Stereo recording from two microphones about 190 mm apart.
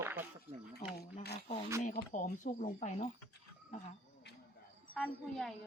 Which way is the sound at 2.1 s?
40° left (ahead or behind).